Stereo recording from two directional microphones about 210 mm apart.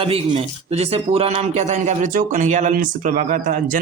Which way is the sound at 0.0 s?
30° right (ahead or behind).